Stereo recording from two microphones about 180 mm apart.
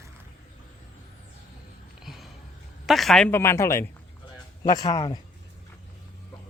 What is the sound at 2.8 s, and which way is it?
A woman's voice, centre (ahead or behind).